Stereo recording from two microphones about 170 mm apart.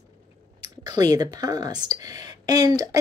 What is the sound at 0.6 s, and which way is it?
Speech, 20° right (ahead or behind).